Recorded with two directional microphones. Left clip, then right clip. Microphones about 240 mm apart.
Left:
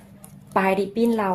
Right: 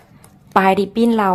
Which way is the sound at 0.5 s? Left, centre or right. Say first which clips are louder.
Right 7 dB; right.